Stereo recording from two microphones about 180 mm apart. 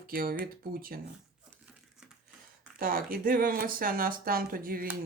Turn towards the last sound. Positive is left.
turn(degrees=-55)  # may be behind; listen again after turning